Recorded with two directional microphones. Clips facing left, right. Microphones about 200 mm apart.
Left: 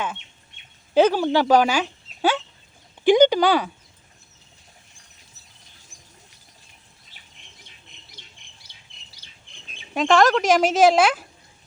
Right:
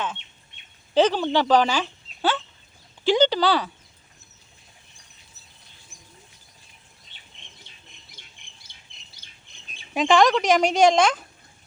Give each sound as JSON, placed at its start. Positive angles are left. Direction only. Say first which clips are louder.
{"t": 0.9, "sound": "speech", "louder": "left 2 dB", "side_deg": 10}
{"t": 3.0, "sound": "a sound", "louder": "left 4 dB", "side_deg": 15}
{"t": 8.2, "sound": "squawk", "louder": "left 2 dB", "side_deg": -50}
{"t": 9.9, "sound": "a woman's voice", "louder": "left 1 dB", "side_deg": 0}